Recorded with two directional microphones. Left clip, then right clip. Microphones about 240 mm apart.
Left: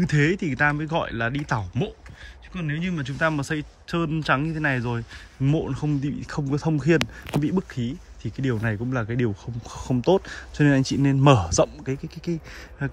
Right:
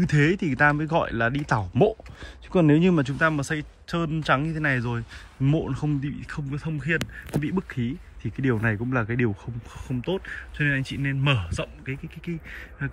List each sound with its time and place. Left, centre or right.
0.0 s speech: centre
2.5 s speech: centre
7.0 s speech: centre
9.8 s speech: centre